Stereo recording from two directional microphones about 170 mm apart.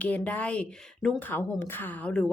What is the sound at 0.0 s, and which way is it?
A woman's voice, 10° left (ahead or behind).